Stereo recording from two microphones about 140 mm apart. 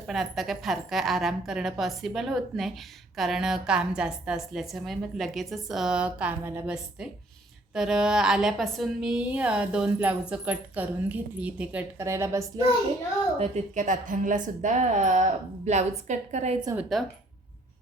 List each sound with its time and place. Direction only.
0.1 s a woman's voice: centre (ahead or behind)
11.9 s a woman's voice: 20° right (ahead or behind)
13.4 s a woman's voice: 60° right (ahead or behind)
16.9 s a woman's voice: centre (ahead or behind)